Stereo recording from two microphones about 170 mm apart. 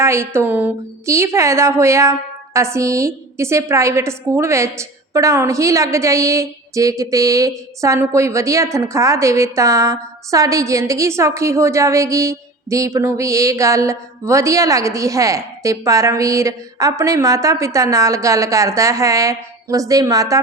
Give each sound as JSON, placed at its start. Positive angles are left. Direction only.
{"t": 0.0, "sound": "a woman's voice", "side_deg": -15}